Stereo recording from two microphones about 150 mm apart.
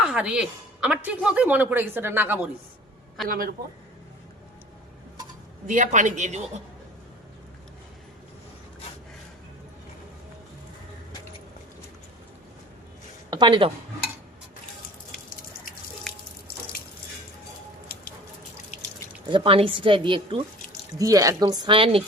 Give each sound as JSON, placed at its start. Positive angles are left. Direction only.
{"t": 0.0, "sound": "speech", "side_deg": -5}
{"t": 3.2, "sound": "speech", "side_deg": -75}
{"t": 5.6, "sound": "a man's voice", "side_deg": -55}
{"t": 13.3, "sound": "speech", "side_deg": -30}
{"t": 16.1, "sound": "drip", "side_deg": 5}
{"t": 19.3, "sound": "a woman's voice", "side_deg": -35}
{"t": 21.0, "sound": "a woman's voice", "side_deg": -25}